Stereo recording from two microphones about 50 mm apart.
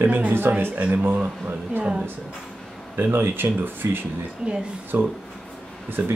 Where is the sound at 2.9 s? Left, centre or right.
Right.